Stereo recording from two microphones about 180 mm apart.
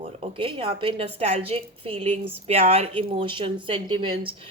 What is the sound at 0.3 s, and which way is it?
A woman's voice, 30° right (ahead or behind).